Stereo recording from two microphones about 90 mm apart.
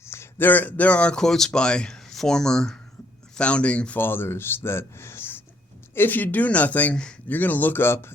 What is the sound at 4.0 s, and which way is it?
Speech, 25° left (ahead or behind).